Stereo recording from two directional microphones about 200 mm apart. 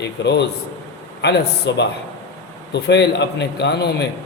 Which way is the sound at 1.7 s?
60° left (ahead or behind).